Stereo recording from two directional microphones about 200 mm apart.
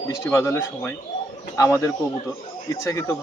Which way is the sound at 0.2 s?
15° left (ahead or behind).